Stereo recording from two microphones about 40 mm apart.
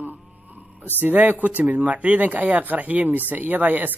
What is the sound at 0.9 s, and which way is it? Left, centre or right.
Speech, right.